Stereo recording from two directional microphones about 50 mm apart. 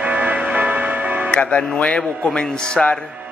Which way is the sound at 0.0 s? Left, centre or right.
Right.